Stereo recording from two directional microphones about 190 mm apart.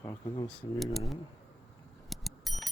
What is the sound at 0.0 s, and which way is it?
Speech, 15° left (ahead or behind).